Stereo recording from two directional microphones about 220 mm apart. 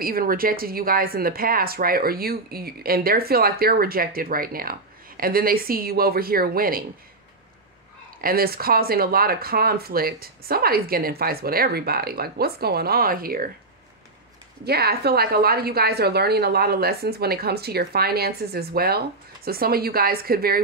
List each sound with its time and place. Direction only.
0.0 s speech: 40° right (ahead or behind)
8.2 s speech: 40° right (ahead or behind)
14.6 s speech: 45° right (ahead or behind)